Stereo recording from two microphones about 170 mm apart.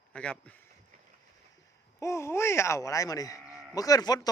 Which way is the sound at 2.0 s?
15° left (ahead or behind).